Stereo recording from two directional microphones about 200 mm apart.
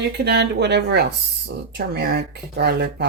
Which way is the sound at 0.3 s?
55° right (ahead or behind).